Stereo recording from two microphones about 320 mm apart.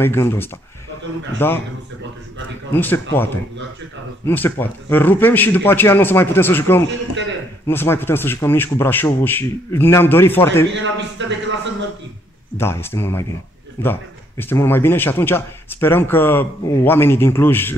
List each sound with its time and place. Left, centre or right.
0.0 s a man's voice: centre
2.7 s a man's voice: centre
4.3 s a man's voice: centre
10.7 s a man's voice: right
12.5 s a man's voice: centre